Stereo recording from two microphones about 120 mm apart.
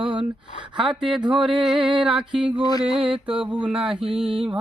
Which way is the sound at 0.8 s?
5° right (ahead or behind).